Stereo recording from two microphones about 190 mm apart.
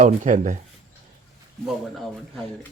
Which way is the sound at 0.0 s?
40° right (ahead or behind).